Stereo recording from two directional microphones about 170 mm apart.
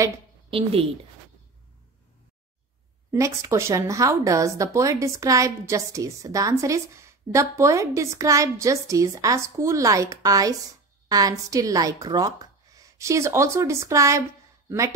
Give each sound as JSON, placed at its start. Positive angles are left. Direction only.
{"t": 0.5, "sound": "a woman's voice", "side_deg": -35}
{"t": 3.1, "sound": "speech", "side_deg": -15}